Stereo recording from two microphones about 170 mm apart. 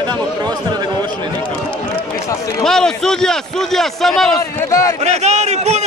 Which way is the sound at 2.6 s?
5° left (ahead or behind).